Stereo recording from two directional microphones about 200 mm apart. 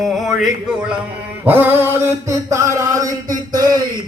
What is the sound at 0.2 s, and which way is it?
Speech, centre (ahead or behind).